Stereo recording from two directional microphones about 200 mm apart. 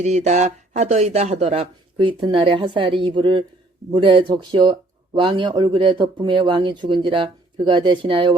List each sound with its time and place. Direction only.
0.0 s speech: 35° right (ahead or behind)